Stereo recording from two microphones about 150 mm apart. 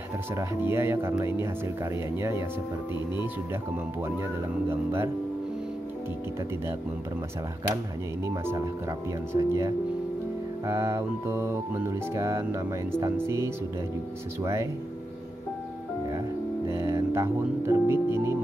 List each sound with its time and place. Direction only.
0.4 s speech: 15° right (ahead or behind)
4.0 s speech: 15° right (ahead or behind)
8.5 s music: 20° right (ahead or behind)
13.0 s speech: 20° right (ahead or behind)
14.4 s music: 20° right (ahead or behind)
16.1 s music: 20° right (ahead or behind)